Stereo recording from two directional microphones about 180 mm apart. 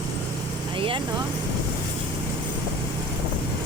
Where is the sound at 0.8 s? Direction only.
30° right (ahead or behind).